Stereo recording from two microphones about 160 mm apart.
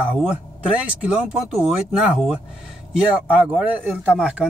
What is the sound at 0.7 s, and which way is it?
Speech, 5° right (ahead or behind).